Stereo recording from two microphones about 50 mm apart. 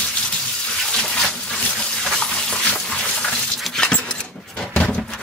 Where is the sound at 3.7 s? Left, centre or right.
Centre.